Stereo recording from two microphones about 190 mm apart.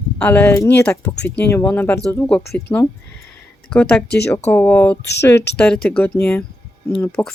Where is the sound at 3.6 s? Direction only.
5° left (ahead or behind).